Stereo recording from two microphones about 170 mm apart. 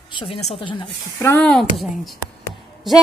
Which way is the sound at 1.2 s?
15° left (ahead or behind).